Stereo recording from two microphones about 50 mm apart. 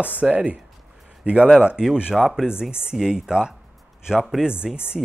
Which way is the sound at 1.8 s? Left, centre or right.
Centre.